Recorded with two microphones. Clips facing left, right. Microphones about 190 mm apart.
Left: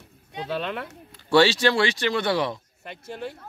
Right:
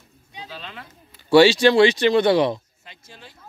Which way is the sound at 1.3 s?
15° right (ahead or behind).